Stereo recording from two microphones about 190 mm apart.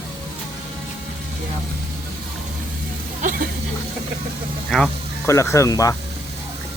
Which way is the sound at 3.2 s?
45° right (ahead or behind).